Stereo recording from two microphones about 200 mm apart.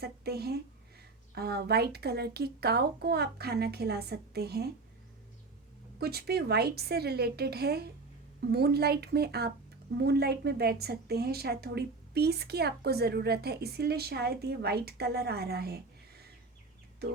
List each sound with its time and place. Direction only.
0.0 s a woman's voice: 50° right (ahead or behind)
6.0 s a woman's voice: 50° right (ahead or behind)